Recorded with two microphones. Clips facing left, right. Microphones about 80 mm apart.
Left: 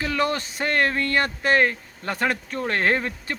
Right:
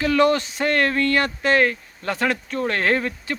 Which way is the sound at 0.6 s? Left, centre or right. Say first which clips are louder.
Right 2 dB; left.